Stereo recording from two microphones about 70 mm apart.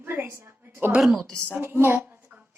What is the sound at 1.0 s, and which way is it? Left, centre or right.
Speech, centre.